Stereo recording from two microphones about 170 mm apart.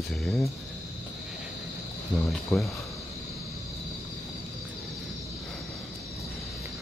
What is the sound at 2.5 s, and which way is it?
Speech, centre (ahead or behind).